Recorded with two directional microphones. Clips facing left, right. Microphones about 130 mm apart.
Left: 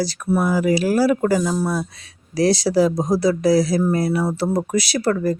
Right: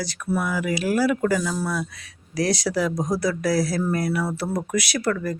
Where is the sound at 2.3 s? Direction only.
30° left (ahead or behind).